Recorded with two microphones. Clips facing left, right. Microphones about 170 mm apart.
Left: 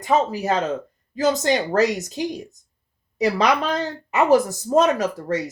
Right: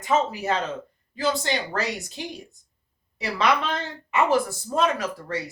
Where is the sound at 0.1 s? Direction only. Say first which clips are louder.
Left 3 dB; 40° left (ahead or behind).